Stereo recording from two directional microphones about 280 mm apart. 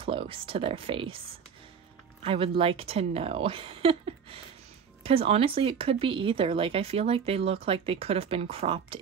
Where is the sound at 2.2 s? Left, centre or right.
Centre.